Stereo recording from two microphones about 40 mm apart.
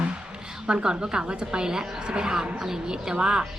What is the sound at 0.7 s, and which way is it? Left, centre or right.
Speech, right.